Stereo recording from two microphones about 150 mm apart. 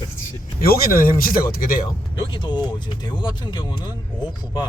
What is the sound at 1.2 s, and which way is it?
Speech, 75° left (ahead or behind).